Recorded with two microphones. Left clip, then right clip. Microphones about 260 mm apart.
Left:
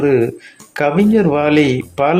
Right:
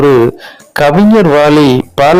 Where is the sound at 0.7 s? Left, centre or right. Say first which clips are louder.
Right 7 dB; right.